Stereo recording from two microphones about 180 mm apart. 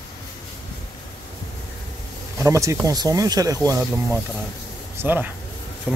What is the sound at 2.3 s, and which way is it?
Speech, 15° right (ahead or behind).